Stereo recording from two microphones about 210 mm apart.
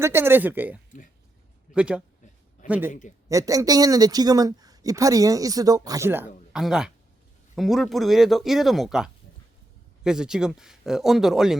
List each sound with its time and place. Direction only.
0.0 s a man's voice: 10° right (ahead or behind)